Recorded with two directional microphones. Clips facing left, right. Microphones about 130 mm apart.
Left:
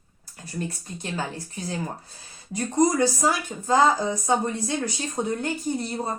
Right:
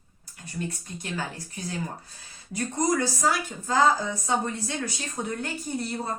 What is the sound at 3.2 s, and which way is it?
A woman's voice, 25° left (ahead or behind).